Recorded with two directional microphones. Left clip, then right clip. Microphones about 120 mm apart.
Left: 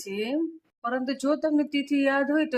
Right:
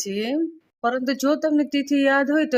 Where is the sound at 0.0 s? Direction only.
35° right (ahead or behind).